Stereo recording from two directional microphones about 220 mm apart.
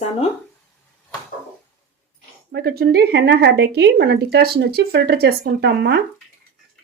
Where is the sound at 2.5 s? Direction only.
50° right (ahead or behind).